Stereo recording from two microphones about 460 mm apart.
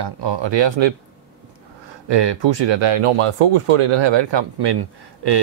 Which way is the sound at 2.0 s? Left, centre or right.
Right.